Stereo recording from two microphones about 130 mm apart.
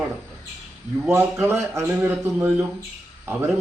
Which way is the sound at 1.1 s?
20° right (ahead or behind).